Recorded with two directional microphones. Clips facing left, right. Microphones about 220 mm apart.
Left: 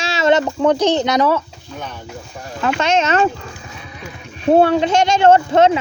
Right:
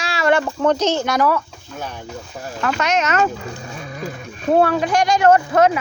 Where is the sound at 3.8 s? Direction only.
45° right (ahead or behind).